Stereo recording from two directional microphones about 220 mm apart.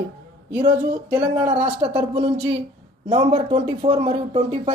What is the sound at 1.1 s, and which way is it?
Speech, 10° right (ahead or behind).